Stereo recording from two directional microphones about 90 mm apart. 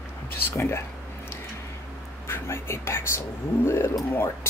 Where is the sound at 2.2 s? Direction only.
30° left (ahead or behind).